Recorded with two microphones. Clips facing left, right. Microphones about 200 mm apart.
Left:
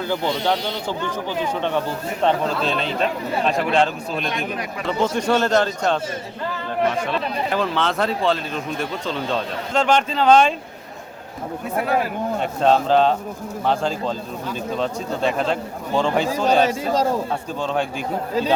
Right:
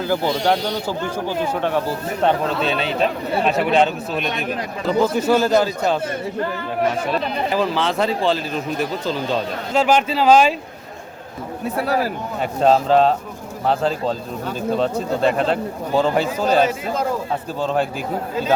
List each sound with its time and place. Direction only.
0.1 s speech: 10° right (ahead or behind)
7.5 s speech: centre (ahead or behind)
12.4 s speech: centre (ahead or behind)
14.8 s speech: centre (ahead or behind)
16.6 s speech: 35° left (ahead or behind)
17.6 s speech: 5° right (ahead or behind)